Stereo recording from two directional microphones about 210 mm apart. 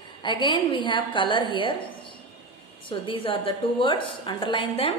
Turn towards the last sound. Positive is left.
turn(degrees=25)  # may be behind; listen again after turning